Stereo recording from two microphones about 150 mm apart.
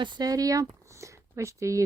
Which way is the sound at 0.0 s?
30° right (ahead or behind).